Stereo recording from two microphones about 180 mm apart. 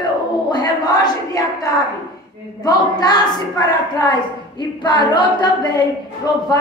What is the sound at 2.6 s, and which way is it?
A woman's voice, 20° left (ahead or behind).